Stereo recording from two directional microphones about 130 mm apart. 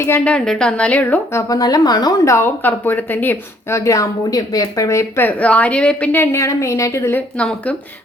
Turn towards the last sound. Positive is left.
turn(degrees=10)  # may be behind; listen again after turning